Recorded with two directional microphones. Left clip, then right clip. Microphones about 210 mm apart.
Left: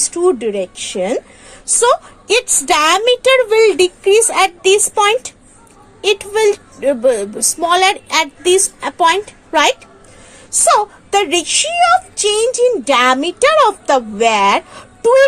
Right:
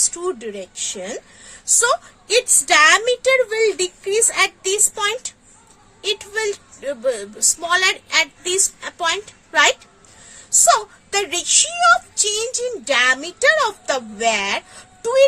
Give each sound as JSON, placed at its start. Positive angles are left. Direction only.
{"t": 0.2, "sound": "a woman's voice", "side_deg": 10}